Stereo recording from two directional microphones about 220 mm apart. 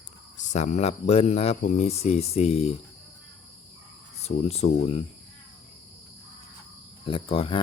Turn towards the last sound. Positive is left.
turn(degrees=25)  # may be behind; listen again after turning